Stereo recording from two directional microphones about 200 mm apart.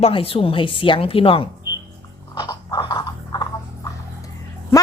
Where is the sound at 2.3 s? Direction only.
20° left (ahead or behind).